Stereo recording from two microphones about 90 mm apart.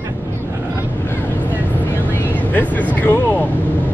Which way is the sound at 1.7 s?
20° left (ahead or behind).